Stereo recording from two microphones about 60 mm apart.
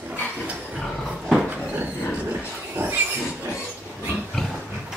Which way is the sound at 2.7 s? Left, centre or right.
Right.